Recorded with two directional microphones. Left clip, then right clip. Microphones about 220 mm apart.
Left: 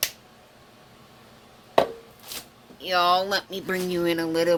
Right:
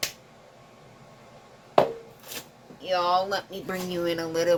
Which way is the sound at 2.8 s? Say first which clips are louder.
Left 3 dB; 50° left (ahead or behind).